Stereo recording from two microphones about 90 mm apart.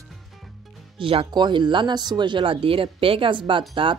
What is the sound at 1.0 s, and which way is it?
Speech, 90° right.